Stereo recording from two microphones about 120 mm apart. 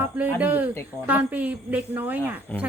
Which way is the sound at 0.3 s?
15° right (ahead or behind).